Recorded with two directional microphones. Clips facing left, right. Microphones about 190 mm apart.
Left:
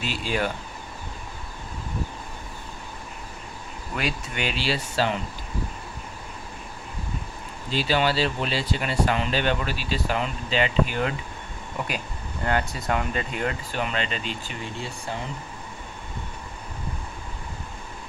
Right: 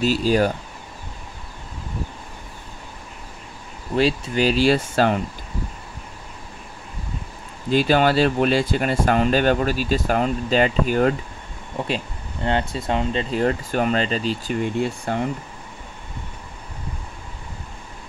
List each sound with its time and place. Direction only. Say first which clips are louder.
0.0 s speech: right 9 dB; 40° right (ahead or behind)
3.9 s speech: right 10 dB; 30° right (ahead or behind); by 5.2 s 50° right (ahead or behind)
7.7 s speech: right 6 dB; 50° right (ahead or behind)
12.4 s speech: right 3 dB; 25° right (ahead or behind)
14.6 s speech: right 11 dB; 55° right (ahead or behind)